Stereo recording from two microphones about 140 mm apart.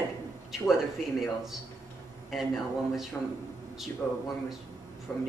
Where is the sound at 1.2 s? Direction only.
Centre (ahead or behind).